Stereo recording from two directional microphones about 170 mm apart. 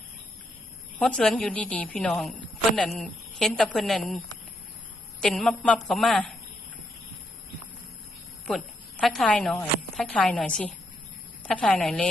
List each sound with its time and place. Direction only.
0.9 s a woman's voice: 5° left (ahead or behind)
5.2 s a woman's voice: centre (ahead or behind)
8.4 s a woman's voice: centre (ahead or behind)